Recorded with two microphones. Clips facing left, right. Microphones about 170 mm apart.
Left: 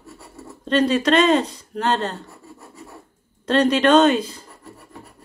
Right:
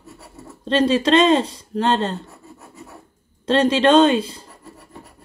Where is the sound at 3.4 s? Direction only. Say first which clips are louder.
Right 1 dB; 25° right (ahead or behind).